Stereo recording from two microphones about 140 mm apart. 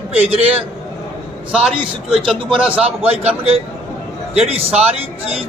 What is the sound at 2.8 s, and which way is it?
A man's voice, 45° right (ahead or behind).